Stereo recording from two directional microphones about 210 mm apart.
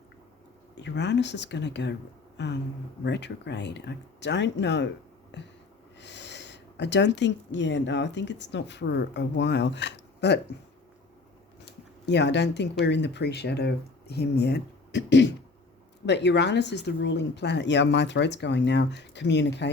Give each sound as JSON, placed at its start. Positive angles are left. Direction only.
{"t": 0.8, "sound": "speech", "side_deg": 55}
{"t": 12.0, "sound": "speech", "side_deg": 55}